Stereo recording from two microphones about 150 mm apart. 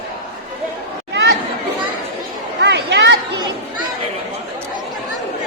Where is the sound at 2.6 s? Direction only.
90° right.